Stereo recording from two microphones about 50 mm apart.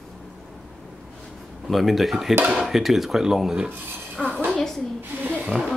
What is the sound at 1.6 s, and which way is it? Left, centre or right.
Speech, centre.